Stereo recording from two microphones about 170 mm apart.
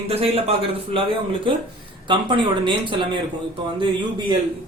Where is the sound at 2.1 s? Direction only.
30° right (ahead or behind).